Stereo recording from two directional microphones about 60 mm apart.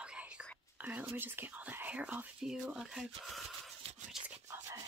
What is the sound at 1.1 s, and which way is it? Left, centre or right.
Speech, right.